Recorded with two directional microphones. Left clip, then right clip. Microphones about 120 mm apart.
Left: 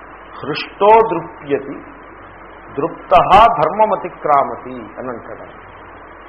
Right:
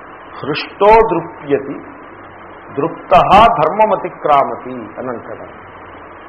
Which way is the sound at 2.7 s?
30° left (ahead or behind).